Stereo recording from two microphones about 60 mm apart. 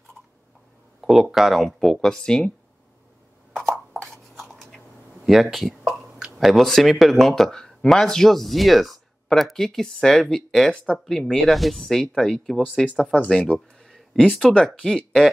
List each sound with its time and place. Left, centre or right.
1.0 s speech: centre
4.0 s a sound: centre
6.3 s speech: centre
13.1 s speech: centre